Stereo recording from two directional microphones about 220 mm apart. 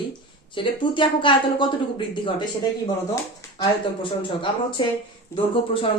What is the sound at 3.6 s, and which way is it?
A woman's voice, 25° left (ahead or behind).